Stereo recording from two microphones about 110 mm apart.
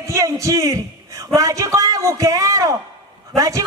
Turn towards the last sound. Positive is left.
turn(degrees=-30)  # may be behind; listen again after turning